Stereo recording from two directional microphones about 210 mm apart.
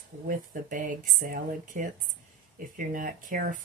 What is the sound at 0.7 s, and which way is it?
Speech, 40° right (ahead or behind).